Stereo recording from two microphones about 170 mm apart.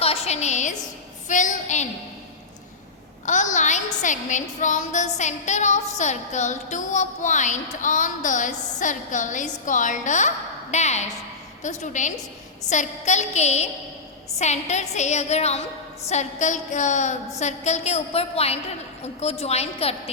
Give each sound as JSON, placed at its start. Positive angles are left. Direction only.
{"t": 0.0, "sound": "a sound", "side_deg": 40}
{"t": 1.3, "sound": "a woman's voice", "side_deg": 45}
{"t": 3.2, "sound": "a woman's voice", "side_deg": 45}